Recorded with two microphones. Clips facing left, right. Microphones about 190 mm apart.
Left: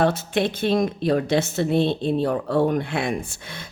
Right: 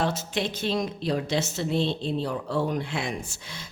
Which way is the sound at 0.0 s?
55° left (ahead or behind).